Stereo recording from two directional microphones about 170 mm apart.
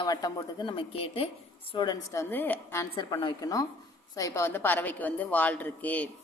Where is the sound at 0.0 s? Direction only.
20° left (ahead or behind).